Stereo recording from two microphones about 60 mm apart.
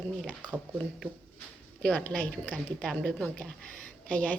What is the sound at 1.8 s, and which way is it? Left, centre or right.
A woman's voice, left.